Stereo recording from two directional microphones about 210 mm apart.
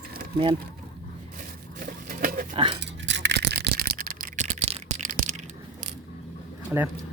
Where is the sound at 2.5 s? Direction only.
25° right (ahead or behind).